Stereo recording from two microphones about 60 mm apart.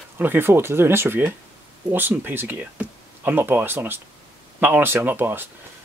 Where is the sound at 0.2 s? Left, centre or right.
Right.